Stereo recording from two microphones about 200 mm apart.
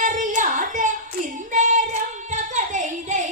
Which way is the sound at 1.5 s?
40° right (ahead or behind).